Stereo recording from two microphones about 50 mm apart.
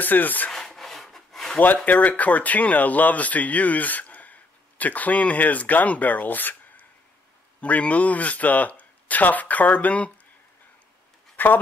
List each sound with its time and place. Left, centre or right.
0.0 s speech: left
0.5 s rub: centre
1.9 s speech: left
11.3 s speech: left